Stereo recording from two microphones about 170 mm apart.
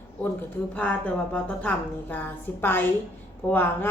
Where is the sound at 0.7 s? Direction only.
10° left (ahead or behind).